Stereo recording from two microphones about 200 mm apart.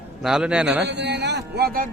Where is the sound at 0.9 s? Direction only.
60° right (ahead or behind).